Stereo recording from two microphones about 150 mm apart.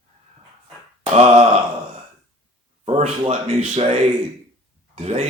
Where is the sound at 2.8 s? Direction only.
45° right (ahead or behind).